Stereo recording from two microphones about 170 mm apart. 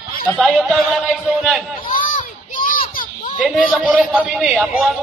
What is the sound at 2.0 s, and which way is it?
Children playing, 55° left (ahead or behind).